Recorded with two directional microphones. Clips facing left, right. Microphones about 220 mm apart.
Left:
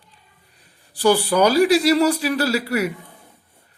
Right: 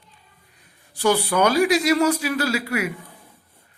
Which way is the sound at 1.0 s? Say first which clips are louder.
Left 3 dB; 35° left (ahead or behind).